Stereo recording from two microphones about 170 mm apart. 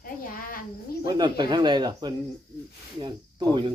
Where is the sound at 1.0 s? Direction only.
25° right (ahead or behind).